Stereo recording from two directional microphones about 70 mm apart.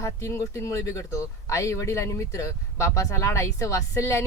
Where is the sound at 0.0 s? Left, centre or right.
Left.